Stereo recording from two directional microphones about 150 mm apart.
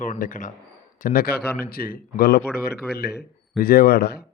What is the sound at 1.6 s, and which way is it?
Speech, 80° left.